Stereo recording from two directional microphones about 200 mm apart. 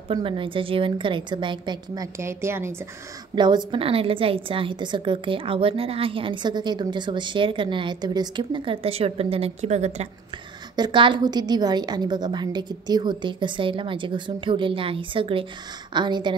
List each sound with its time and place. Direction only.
0.1 s a woman's voice: 25° right (ahead or behind)
10.8 s a woman's voice: 25° right (ahead or behind)